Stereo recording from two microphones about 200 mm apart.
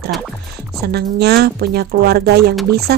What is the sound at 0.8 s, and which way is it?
A woman's voice, 55° right (ahead or behind).